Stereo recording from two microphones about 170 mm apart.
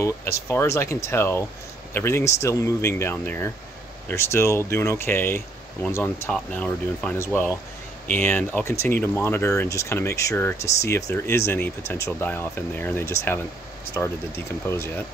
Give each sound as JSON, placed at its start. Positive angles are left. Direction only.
{"t": 0.5, "sound": "speech", "side_deg": 15}